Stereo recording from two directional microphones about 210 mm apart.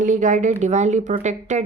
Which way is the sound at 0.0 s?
35° right (ahead or behind).